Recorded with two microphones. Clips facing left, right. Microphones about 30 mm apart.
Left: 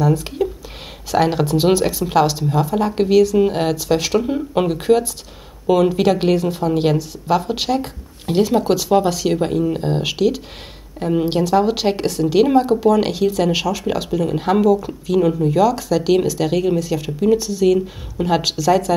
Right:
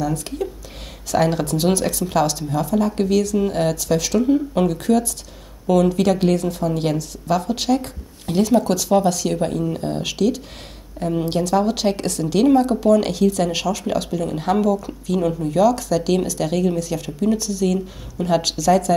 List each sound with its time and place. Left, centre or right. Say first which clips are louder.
0.0 s speech: left 5 dB; centre